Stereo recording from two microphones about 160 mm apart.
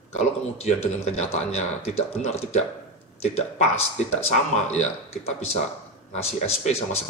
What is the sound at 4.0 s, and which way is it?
A man's voice, 45° left (ahead or behind).